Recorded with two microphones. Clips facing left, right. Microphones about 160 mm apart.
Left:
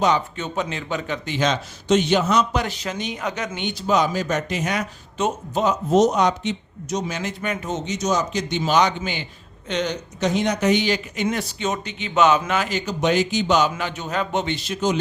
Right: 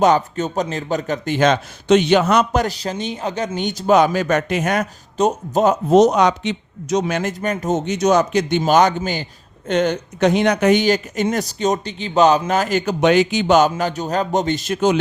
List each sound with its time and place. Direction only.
0.0 s a man's voice: 45° right (ahead or behind)
5.9 s a man's voice: 70° right (ahead or behind)